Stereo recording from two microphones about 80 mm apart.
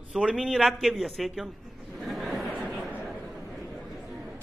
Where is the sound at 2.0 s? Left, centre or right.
Centre.